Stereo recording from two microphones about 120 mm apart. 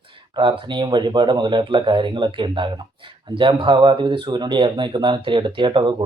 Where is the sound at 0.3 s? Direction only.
40° right (ahead or behind).